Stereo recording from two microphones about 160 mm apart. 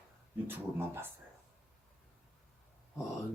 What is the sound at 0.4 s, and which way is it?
Speech, 15° right (ahead or behind).